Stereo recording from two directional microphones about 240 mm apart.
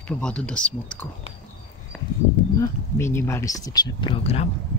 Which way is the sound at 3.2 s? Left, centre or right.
Centre.